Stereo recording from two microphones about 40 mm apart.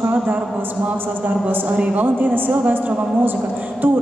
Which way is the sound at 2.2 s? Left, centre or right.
Right.